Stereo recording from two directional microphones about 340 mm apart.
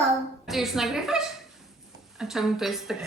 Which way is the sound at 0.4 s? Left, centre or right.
Centre.